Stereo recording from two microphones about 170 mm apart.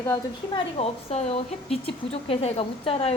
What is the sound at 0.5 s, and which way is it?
Speech, 35° left (ahead or behind).